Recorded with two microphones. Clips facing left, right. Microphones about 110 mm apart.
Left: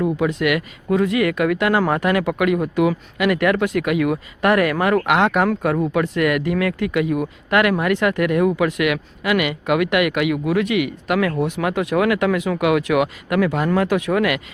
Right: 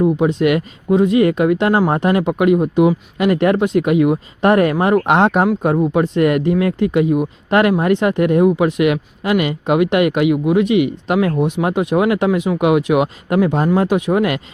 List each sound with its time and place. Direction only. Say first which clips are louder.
0.0 s speech: right 5 dB; 20° right (ahead or behind)